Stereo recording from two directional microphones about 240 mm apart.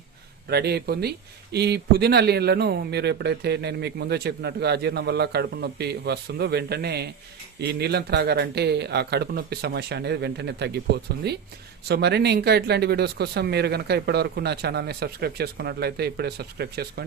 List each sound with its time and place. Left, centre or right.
0.5 s speech: right